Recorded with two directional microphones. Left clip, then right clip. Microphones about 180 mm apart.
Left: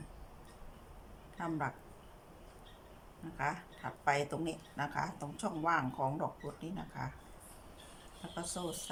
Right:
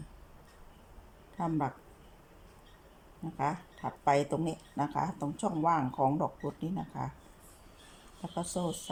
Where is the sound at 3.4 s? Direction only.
25° right (ahead or behind).